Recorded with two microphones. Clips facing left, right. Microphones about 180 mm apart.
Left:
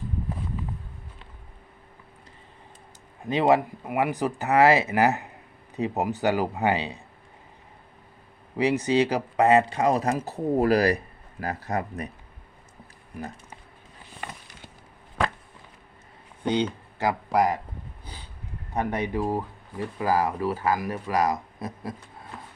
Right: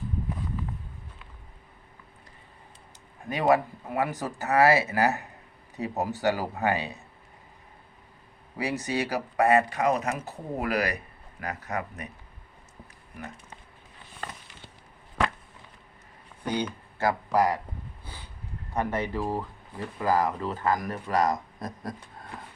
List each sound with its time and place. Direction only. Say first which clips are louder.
3.2 s speech: left 2 dB; 20° left (ahead or behind)
8.5 s speech: left 7 dB; 15° left (ahead or behind); by 12.0 s 35° left (ahead or behind)
16.4 s speech: left 5 dB; 25° left (ahead or behind)
18.7 s speech: left 2 dB; 15° left (ahead or behind)